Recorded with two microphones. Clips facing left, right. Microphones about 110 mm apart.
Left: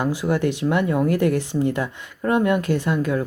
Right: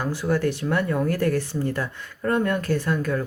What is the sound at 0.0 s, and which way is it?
Speech, 15° left (ahead or behind).